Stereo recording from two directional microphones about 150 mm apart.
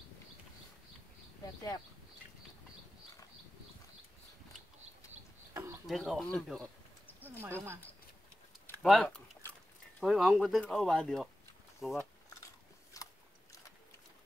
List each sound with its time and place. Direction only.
1.4 s speech: 25° left (ahead or behind)
5.5 s a sound: 20° right (ahead or behind)
5.9 s speech: centre (ahead or behind)
7.2 s speech: 15° right (ahead or behind)
8.8 s speech: 5° left (ahead or behind)
12.9 s biting: 20° left (ahead or behind)